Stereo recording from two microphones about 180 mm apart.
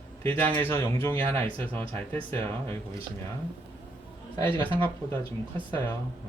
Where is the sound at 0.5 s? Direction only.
15° left (ahead or behind).